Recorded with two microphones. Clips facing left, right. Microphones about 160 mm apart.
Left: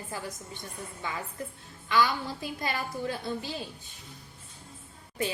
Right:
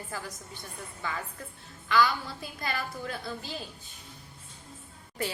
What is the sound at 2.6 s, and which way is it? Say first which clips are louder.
Speech: even; 20° left (ahead or behind).